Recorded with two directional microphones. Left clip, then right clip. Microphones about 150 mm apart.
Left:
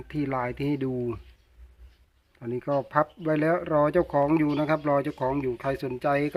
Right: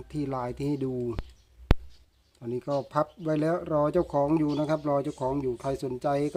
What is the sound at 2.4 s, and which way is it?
Speech, 15° right (ahead or behind).